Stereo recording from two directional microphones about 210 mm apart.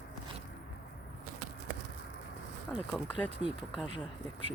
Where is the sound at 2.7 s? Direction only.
5° left (ahead or behind).